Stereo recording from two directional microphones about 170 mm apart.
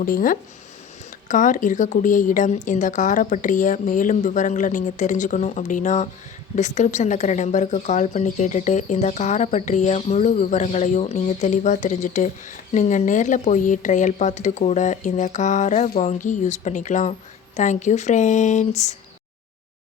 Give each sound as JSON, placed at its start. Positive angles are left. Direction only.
{"t": 0.0, "sound": "speech", "side_deg": 55}